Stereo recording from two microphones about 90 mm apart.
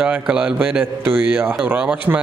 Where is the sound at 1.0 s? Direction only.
25° right (ahead or behind).